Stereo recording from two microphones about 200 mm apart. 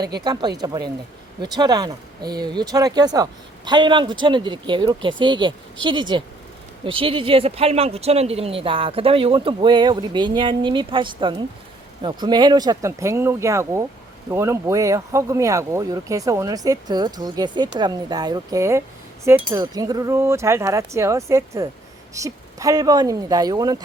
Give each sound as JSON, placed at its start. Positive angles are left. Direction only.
{"t": 0.3, "sound": "speech", "side_deg": -20}